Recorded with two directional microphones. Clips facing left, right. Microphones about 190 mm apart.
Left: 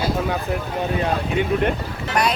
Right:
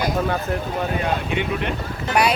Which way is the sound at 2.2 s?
10° right (ahead or behind).